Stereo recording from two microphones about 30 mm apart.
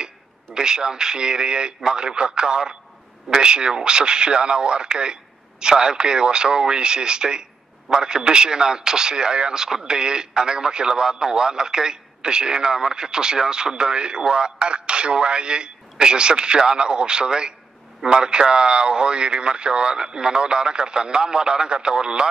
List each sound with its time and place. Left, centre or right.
0.6 s speech: right